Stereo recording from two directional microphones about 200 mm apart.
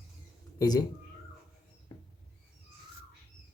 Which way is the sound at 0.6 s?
20° left (ahead or behind).